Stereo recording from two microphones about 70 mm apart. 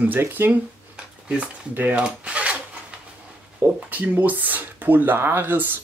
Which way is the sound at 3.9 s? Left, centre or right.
Right.